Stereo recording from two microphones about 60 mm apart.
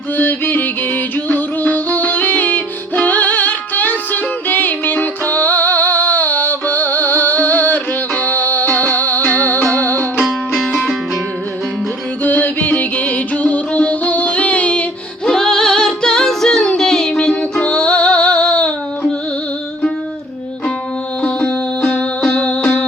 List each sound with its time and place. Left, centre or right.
0.2 s music: left
12.2 s music: left
15.2 s music: centre
21.2 s music: centre